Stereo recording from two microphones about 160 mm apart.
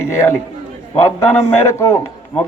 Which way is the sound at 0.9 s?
15° left (ahead or behind).